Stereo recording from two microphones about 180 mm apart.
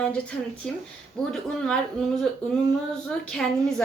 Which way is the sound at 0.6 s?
5° left (ahead or behind).